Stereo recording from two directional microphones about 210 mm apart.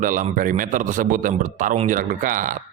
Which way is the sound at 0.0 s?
40° right (ahead or behind).